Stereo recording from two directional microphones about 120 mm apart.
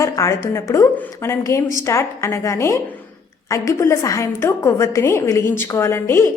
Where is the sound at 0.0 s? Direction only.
25° left (ahead or behind).